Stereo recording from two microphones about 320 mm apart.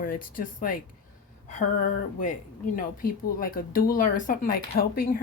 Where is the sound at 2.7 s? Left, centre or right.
Left.